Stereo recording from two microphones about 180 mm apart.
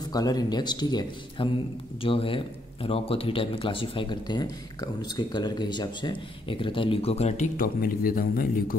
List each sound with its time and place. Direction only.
0.1 s speech: 20° left (ahead or behind); by 8.7 s 50° left (ahead or behind)